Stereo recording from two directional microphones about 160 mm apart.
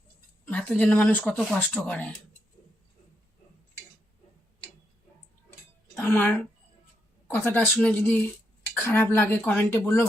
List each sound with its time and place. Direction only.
0.4 s speech: 10° left (ahead or behind)
6.0 s speech: 15° left (ahead or behind)